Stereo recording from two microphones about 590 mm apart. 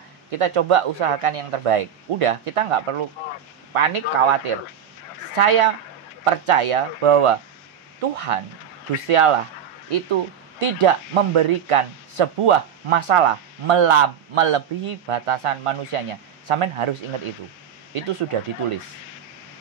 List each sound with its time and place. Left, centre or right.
0.3 s speech: right
17.9 s speech: right